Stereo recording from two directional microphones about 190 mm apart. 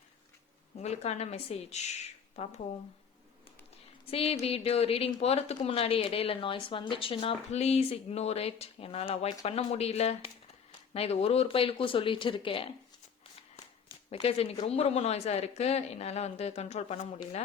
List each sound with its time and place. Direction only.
0.8 s speech: 35° left (ahead or behind)
4.0 s speech: 30° left (ahead or behind)
14.1 s speech: 30° left (ahead or behind)